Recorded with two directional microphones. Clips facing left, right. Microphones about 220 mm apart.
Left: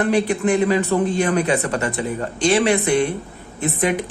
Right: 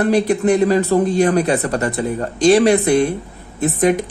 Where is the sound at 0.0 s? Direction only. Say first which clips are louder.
Right 3 dB; 40° right (ahead or behind).